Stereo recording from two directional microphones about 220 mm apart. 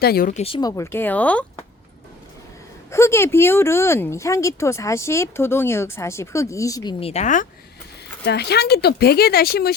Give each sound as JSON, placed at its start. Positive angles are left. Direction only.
{"t": 0.0, "sound": "speech", "side_deg": 45}
{"t": 0.4, "sound": "speech", "side_deg": 20}
{"t": 2.9, "sound": "speech", "side_deg": 10}
{"t": 7.0, "sound": "speech", "side_deg": 30}
{"t": 8.2, "sound": "speech", "side_deg": 50}